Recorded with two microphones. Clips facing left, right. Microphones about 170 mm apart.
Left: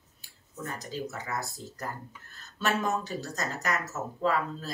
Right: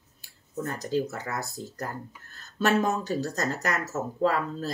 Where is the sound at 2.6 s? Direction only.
45° right (ahead or behind).